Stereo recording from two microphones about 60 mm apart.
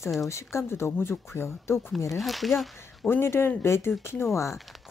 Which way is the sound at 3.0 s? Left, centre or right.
Left.